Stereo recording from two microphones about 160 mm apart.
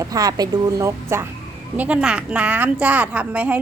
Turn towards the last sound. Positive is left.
turn(degrees=-10)  # may be behind; listen again after turning